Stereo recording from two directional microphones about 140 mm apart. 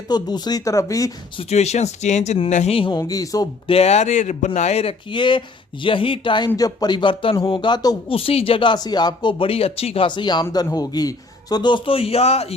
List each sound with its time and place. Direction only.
0.1 s speech: 30° left (ahead or behind)
1.4 s speech: 50° left (ahead or behind)
2.7 s speech: 35° left (ahead or behind)
3.0 s speech: 25° left (ahead or behind)
3.7 s speech: 50° left (ahead or behind); by 8.1 s 30° left (ahead or behind)
8.1 s speech: 45° left (ahead or behind)